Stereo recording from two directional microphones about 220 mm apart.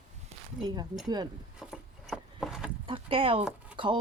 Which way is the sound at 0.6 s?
20° right (ahead or behind).